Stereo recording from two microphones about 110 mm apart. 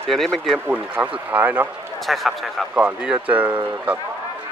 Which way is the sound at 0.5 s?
15° right (ahead or behind).